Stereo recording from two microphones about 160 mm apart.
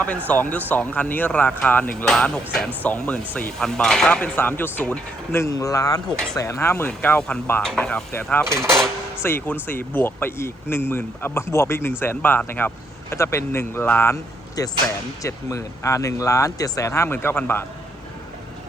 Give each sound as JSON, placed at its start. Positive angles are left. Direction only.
{"t": 0.5, "sound": "speech", "side_deg": 10}
{"t": 8.4, "sound": "speech", "side_deg": -15}
{"t": 9.1, "sound": "speech", "side_deg": 15}